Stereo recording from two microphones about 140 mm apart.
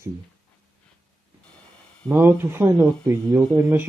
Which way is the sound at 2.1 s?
15° right (ahead or behind).